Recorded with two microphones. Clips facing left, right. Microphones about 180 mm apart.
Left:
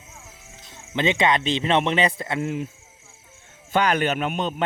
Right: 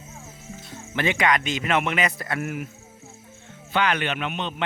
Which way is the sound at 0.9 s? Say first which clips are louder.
Left 2 dB; 20° left (ahead or behind).